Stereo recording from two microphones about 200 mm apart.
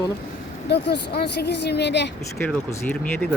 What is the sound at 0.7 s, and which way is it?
Speech, 55° left (ahead or behind).